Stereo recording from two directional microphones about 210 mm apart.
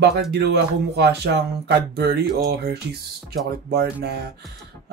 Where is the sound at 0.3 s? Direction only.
50° right (ahead or behind).